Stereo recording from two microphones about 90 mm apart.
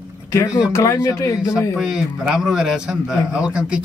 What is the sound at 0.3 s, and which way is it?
Speech, 35° left (ahead or behind).